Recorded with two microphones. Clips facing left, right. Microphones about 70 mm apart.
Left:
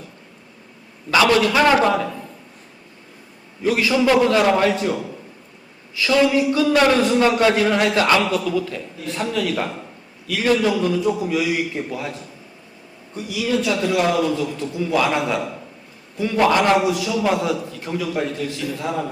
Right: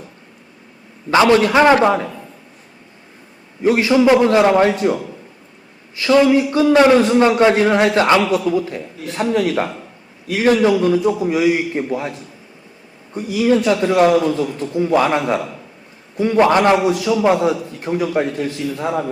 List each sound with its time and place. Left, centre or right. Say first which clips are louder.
1.1 s a man's voice: right 4 dB; right
3.6 s a man's voice: right 5 dB; right
6.2 s a man's voice: right 4 dB; right
10.2 s a man's voice: right 5 dB; right
13.1 s a man's voice: right 6 dB; right
16.9 s a man's voice: right 5 dB; right
17.2 s a man's voice: right 5 dB; right